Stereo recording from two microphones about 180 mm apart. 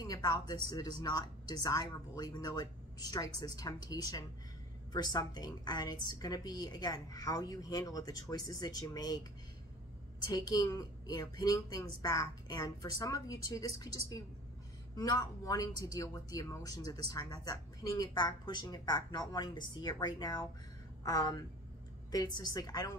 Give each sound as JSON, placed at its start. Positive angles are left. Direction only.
{"t": 0.0, "sound": "a woman's voice", "side_deg": 20}
{"t": 10.3, "sound": "a woman's voice", "side_deg": 20}
{"t": 15.0, "sound": "a woman's voice", "side_deg": 20}